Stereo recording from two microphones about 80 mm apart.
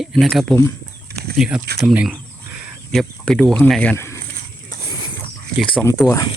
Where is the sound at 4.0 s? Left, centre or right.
Left.